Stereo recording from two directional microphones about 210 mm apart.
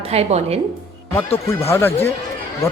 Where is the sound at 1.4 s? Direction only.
15° left (ahead or behind).